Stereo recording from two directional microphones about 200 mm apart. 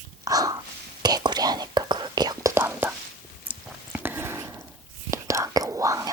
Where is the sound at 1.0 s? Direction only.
20° right (ahead or behind).